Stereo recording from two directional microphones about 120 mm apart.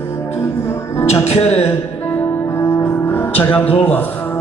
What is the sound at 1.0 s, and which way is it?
Music, 60° left (ahead or behind).